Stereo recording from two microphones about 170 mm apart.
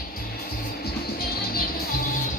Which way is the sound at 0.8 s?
65° left (ahead or behind).